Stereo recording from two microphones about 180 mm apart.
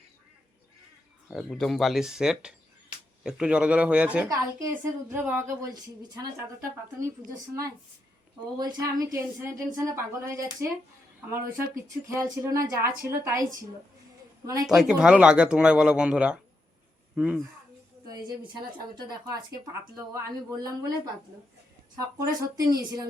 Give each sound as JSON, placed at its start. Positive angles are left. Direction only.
{"t": 1.3, "sound": "a woman's voice", "side_deg": 0}
{"t": 8.5, "sound": "a woman's voice", "side_deg": -25}
{"t": 14.7, "sound": "speech", "side_deg": -5}
{"t": 18.1, "sound": "a woman's voice", "side_deg": -20}